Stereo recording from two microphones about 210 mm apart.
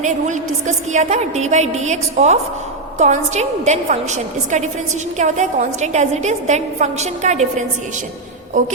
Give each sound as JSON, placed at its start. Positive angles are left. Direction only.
{"t": 0.9, "sound": "a woman's voice", "side_deg": -30}
{"t": 8.6, "sound": "a woman's voice", "side_deg": -35}